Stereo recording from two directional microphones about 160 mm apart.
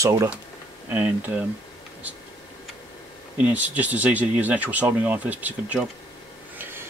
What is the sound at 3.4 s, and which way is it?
Speech, 10° right (ahead or behind).